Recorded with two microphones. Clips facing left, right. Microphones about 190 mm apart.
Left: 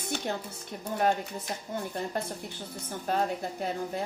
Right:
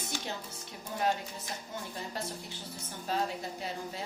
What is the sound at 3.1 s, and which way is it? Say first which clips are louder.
Speech: left 4 dB; 55° left (ahead or behind).